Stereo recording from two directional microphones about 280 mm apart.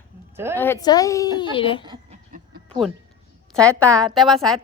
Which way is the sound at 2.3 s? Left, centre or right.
Right.